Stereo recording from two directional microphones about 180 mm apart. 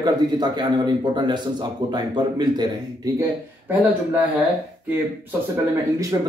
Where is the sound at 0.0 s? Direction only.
25° right (ahead or behind).